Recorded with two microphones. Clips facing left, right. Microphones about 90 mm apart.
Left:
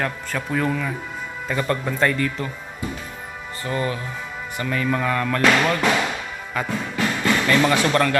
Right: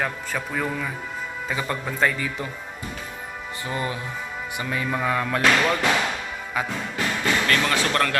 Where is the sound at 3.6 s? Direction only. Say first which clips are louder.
Left 4 dB; 15° right (ahead or behind).